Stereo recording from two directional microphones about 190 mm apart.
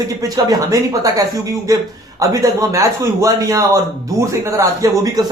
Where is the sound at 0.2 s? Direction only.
15° right (ahead or behind).